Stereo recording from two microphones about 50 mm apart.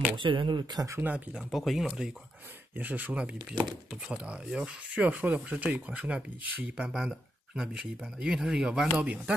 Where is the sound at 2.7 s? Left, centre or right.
Right; by 5.0 s centre.